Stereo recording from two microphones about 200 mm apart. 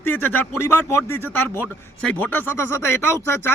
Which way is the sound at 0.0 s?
10° left (ahead or behind).